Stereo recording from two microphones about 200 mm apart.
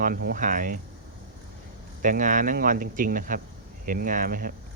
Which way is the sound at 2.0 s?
40° right (ahead or behind).